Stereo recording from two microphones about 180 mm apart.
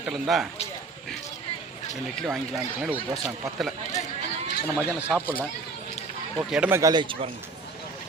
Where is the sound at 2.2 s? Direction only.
Centre (ahead or behind).